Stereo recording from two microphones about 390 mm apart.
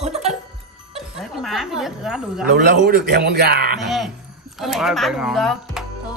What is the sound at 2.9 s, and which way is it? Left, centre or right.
Speech, right.